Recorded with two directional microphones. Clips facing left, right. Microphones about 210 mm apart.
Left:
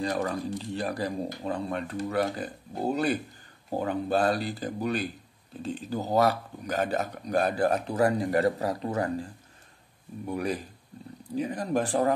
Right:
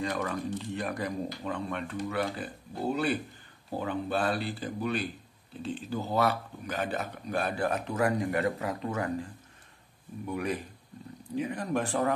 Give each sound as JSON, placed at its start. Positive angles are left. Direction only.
{"t": 0.0, "sound": "speech", "side_deg": 35}